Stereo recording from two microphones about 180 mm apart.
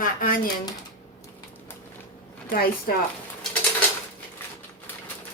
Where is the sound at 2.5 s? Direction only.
55° left (ahead or behind).